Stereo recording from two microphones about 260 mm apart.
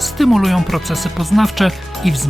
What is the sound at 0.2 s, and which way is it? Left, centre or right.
Speech, centre.